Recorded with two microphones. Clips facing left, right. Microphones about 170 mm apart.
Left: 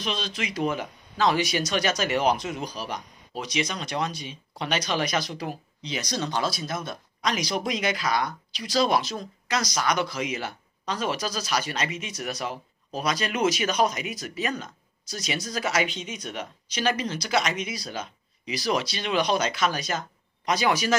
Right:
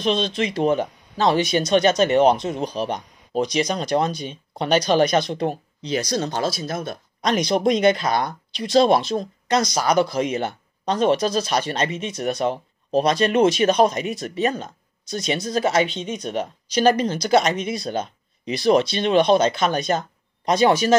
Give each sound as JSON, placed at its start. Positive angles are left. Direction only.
{"t": 0.0, "sound": "speech", "side_deg": -30}
{"t": 5.8, "sound": "speech", "side_deg": -45}
{"t": 7.4, "sound": "speech", "side_deg": -30}